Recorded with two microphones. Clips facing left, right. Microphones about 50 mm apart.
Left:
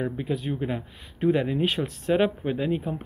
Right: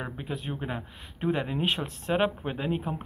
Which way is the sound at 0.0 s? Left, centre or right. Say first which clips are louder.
Left 7 dB; centre.